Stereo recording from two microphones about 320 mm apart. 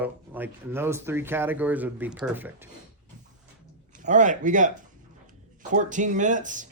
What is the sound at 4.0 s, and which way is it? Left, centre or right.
Speech, right.